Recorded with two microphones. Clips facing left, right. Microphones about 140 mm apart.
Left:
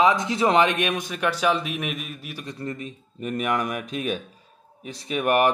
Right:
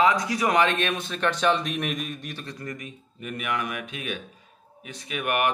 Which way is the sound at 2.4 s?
25° left (ahead or behind).